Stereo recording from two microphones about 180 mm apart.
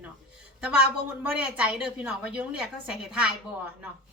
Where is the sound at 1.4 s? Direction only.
5° right (ahead or behind).